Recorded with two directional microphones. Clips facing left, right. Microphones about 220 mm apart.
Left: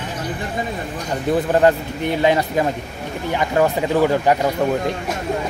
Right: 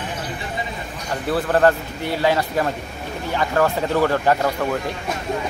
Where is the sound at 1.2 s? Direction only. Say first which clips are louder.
Left 2 dB; 15° left (ahead or behind).